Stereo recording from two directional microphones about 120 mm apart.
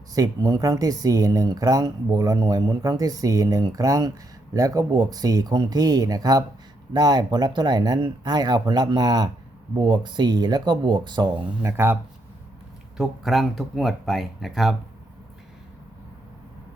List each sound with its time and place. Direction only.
0.1 s speech: 30° right (ahead or behind)
11.6 s speech: 20° right (ahead or behind)
13.0 s speech: centre (ahead or behind)